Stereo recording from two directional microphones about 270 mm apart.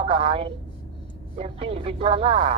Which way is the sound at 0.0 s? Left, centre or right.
Centre.